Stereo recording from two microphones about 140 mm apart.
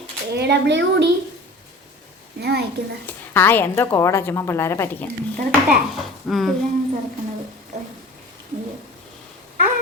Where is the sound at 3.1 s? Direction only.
15° left (ahead or behind).